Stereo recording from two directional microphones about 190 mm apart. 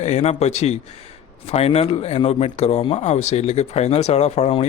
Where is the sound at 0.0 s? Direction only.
35° left (ahead or behind).